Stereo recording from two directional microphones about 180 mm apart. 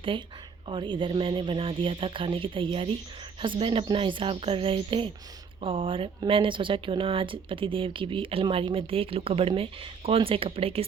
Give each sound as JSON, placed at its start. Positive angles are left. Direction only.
{"t": 0.1, "sound": "speech", "side_deg": -30}